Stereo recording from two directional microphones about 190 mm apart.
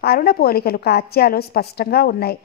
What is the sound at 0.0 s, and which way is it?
A woman's voice, 55° left (ahead or behind).